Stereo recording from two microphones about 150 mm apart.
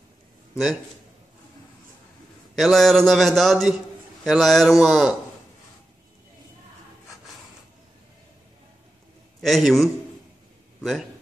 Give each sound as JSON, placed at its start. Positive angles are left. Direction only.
{"t": 2.5, "sound": "a man's voice", "side_deg": 0}
{"t": 9.4, "sound": "a man's voice", "side_deg": 0}